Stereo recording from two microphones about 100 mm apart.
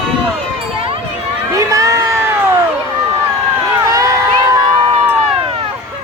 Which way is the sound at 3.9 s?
30° right (ahead or behind).